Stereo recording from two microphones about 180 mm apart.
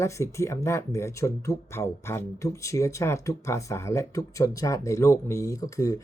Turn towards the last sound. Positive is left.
turn(degrees=20)  # may be behind; listen again after turning